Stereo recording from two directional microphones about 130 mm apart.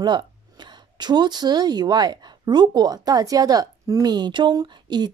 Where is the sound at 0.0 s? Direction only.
35° right (ahead or behind).